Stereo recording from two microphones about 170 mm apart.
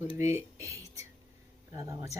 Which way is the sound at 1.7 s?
20° right (ahead or behind).